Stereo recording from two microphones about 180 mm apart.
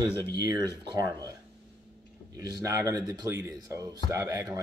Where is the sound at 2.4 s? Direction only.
20° right (ahead or behind).